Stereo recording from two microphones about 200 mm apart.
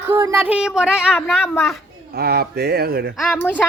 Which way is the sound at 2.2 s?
50° right (ahead or behind).